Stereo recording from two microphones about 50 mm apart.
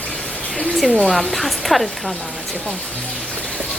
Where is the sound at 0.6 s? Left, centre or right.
Centre.